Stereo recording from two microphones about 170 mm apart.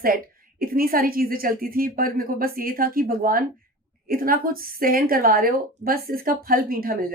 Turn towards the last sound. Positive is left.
turn(degrees=-60)  # may be behind; listen again after turning